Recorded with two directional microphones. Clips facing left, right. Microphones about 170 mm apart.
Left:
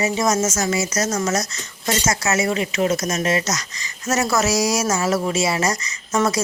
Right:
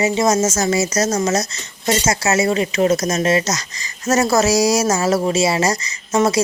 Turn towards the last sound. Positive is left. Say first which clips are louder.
# right 4 dB
turn(degrees=-25)  # may be behind; listen again after turning